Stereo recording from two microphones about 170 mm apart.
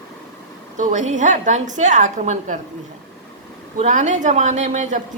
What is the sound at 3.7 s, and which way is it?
A woman's voice, 40° right (ahead or behind).